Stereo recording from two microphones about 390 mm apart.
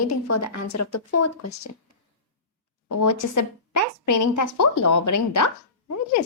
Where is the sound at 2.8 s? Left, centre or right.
Left.